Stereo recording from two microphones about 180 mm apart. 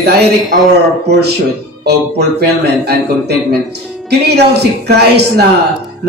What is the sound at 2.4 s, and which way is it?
Speech, 60° right (ahead or behind).